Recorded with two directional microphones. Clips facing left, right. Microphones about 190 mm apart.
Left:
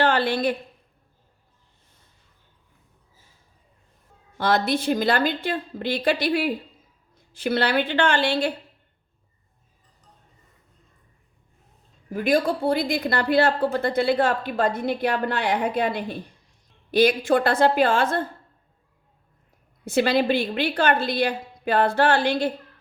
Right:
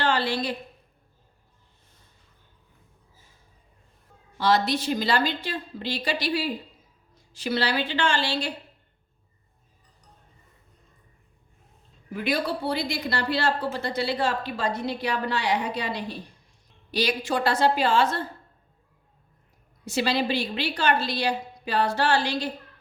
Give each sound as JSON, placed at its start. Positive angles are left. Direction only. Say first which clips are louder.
{"t": 0.0, "sound": "a woman's voice", "louder": "left 4 dB", "side_deg": 55}
{"t": 4.4, "sound": "a woman's voice", "louder": "left 1 dB", "side_deg": 55}
{"t": 12.1, "sound": "a woman's voice", "louder": "left 5 dB", "side_deg": 45}
{"t": 19.8, "sound": "a woman's voice", "louder": "left 5 dB", "side_deg": 55}